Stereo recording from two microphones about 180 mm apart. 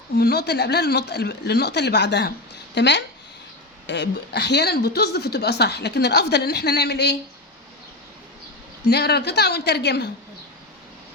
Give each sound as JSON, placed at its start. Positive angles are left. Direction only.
{"t": 0.2, "sound": "a woman's voice", "side_deg": 65}
{"t": 8.9, "sound": "a woman's voice", "side_deg": 65}